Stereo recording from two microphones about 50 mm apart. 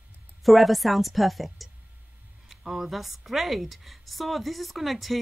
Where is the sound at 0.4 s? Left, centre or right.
Centre.